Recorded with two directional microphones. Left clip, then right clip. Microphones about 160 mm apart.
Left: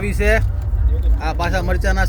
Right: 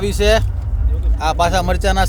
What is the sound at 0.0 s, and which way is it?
Speech, 15° right (ahead or behind).